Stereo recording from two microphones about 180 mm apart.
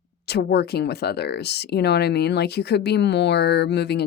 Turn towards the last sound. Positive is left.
turn(degrees=65)  # may be behind; listen again after turning